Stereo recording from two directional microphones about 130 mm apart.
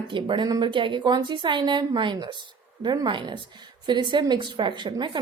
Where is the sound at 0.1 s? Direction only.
40° right (ahead or behind).